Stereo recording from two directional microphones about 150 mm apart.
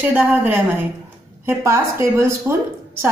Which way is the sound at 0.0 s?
10° right (ahead or behind).